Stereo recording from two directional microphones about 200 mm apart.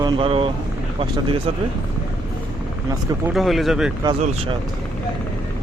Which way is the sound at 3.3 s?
Centre (ahead or behind).